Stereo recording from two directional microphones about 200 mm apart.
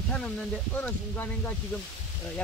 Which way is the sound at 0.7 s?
10° left (ahead or behind).